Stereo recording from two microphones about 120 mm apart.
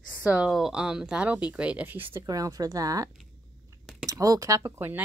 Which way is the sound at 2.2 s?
30° right (ahead or behind).